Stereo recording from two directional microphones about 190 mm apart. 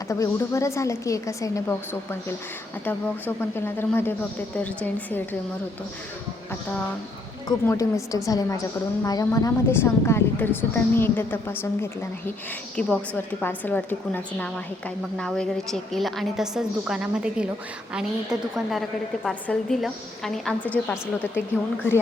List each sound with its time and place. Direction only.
0.1 s a woman's voice: 15° left (ahead or behind)
7.4 s a woman's voice: 15° left (ahead or behind)